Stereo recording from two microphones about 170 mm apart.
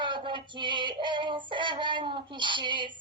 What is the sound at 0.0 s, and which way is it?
Female singing, 30° right (ahead or behind).